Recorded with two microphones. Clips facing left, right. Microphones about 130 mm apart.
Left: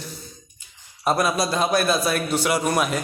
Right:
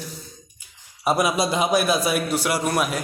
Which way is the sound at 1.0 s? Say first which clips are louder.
Right 1 dB; 10° right (ahead or behind).